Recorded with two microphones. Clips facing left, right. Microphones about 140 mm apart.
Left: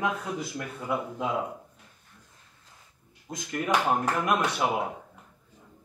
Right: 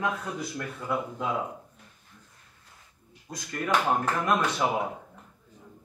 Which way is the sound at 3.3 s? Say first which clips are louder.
Left 1 dB; 20° left (ahead or behind).